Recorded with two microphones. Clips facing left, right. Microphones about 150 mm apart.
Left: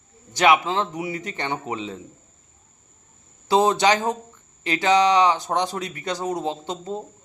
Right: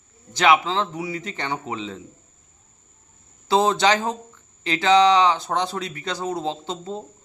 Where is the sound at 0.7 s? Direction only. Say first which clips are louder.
Even; 20° left (ahead or behind).